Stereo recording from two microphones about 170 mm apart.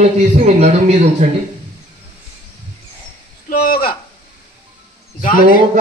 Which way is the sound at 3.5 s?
60° left (ahead or behind).